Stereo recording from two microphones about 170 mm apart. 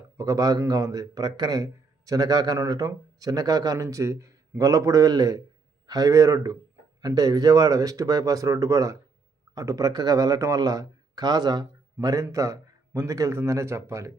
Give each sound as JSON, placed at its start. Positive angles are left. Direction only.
{"t": 0.2, "sound": "a man's voice", "side_deg": -20}